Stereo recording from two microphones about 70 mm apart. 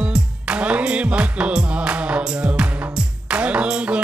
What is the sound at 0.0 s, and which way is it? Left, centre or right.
Music, centre.